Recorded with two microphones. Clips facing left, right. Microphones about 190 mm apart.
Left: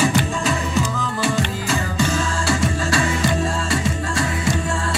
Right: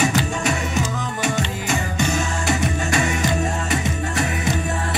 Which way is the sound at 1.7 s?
15° right (ahead or behind).